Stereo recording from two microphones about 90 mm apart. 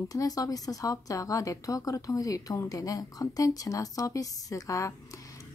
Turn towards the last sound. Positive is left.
turn(degrees=40)  # may be behind; listen again after turning